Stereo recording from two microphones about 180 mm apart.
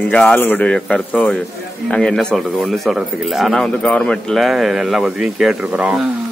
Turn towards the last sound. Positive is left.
turn(degrees=-5)  # may be behind; listen again after turning